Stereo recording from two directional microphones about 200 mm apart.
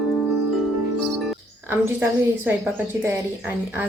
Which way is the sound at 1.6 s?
10° right (ahead or behind).